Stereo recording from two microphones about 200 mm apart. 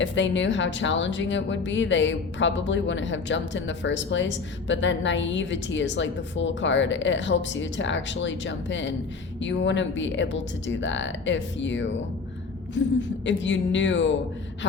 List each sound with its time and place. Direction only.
0.0 s a woman's voice: 65° left (ahead or behind)